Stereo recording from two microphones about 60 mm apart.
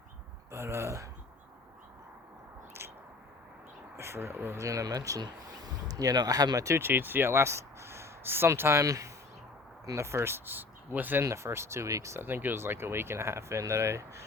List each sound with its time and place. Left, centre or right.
0.5 s speech: right
3.9 s speech: right
4.5 s speech: right
6.7 s speech: right
8.8 s speech: right
10.0 s speech: right
11.2 s speech: right
12.1 s speech: right